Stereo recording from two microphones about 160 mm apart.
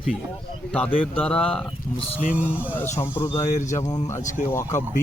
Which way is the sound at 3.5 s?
50° left (ahead or behind).